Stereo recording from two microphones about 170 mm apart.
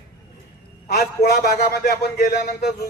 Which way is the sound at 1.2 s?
65° left (ahead or behind).